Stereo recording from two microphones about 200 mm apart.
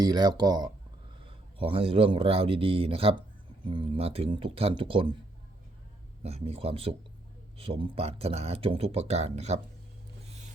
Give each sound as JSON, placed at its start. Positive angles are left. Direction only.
{"t": 0.0, "sound": "a man's voice", "side_deg": -20}
{"t": 6.2, "sound": "speech", "side_deg": -30}